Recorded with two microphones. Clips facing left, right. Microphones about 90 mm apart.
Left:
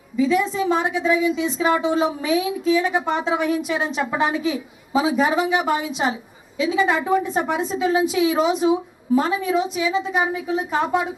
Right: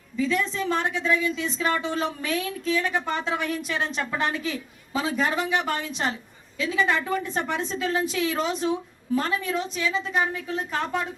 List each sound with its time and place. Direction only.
0.2 s a woman's voice: 10° left (ahead or behind)